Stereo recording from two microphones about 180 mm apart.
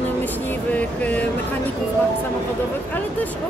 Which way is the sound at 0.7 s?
10° left (ahead or behind).